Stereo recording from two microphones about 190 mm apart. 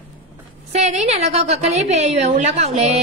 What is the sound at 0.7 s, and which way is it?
A woman's voice, 35° right (ahead or behind).